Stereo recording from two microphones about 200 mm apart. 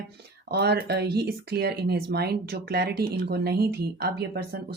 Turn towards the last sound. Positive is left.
turn(degrees=-55)  # may be behind; listen again after turning